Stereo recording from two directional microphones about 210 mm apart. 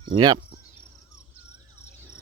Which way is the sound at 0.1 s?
20° right (ahead or behind).